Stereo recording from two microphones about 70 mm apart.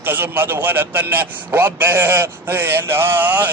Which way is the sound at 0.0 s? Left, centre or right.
Right.